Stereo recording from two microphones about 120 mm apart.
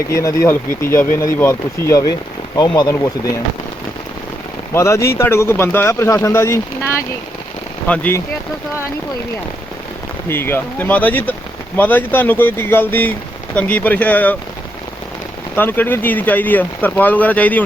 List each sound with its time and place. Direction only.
0.1 s speech: 25° left (ahead or behind)
2.6 s speech: 35° left (ahead or behind)
4.7 s speech: 25° left (ahead or behind)
7.9 s speech: 15° left (ahead or behind)
10.2 s speech: 20° left (ahead or behind)
15.5 s speech: 15° left (ahead or behind)